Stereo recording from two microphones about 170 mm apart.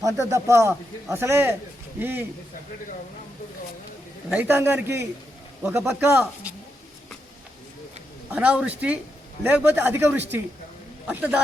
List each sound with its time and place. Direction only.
0.0 s speech: 20° right (ahead or behind)
4.3 s speech: 10° right (ahead or behind)
8.3 s speech: 10° right (ahead or behind)